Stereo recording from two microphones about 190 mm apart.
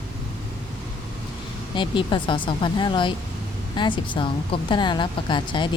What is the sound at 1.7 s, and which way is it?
A woman's voice, 25° left (ahead or behind).